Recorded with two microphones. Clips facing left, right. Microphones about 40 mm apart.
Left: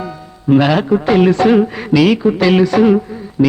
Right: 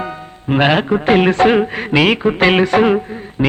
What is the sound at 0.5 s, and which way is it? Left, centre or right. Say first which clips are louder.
Music: left 2 dB; right.